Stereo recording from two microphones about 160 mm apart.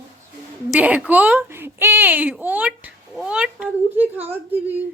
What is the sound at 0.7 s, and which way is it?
A woman's voice, 10° right (ahead or behind).